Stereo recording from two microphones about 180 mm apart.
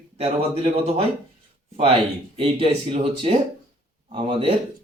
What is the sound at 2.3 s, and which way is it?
Speech, 30° right (ahead or behind).